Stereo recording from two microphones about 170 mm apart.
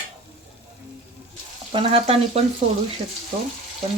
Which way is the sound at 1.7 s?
35° right (ahead or behind).